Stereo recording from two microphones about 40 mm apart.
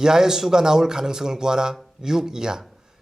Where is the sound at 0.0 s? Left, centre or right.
Centre.